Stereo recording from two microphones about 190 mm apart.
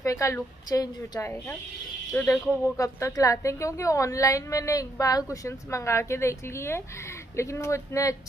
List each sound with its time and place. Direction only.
0.0 s a woman's voice: 15° left (ahead or behind)